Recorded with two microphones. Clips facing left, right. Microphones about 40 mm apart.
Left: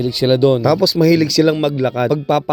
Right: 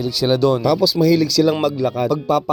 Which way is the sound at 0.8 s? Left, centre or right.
Left.